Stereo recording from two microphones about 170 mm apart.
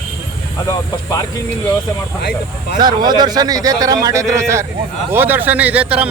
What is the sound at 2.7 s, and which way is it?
A man's voice, 25° right (ahead or behind).